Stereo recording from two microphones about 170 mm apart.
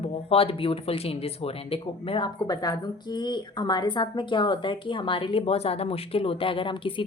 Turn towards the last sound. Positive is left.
turn(degrees=30)  # may be behind; listen again after turning